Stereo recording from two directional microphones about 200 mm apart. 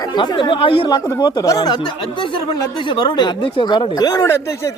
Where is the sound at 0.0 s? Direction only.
20° left (ahead or behind).